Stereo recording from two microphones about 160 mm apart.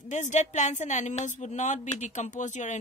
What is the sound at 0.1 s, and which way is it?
Speech, 50° left (ahead or behind).